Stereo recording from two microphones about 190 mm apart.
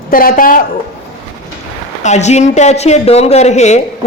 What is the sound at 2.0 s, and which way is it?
Speech, 35° left (ahead or behind).